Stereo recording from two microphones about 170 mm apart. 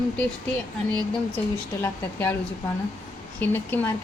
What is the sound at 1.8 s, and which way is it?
Speech, 10° left (ahead or behind).